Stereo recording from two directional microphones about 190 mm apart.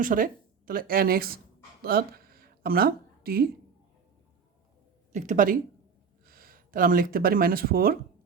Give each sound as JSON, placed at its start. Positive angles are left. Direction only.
{"t": 0.0, "sound": "speech", "side_deg": -45}
{"t": 5.1, "sound": "speech", "side_deg": -40}